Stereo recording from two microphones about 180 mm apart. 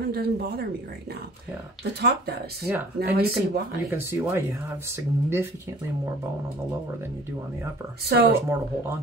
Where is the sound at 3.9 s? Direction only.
15° right (ahead or behind).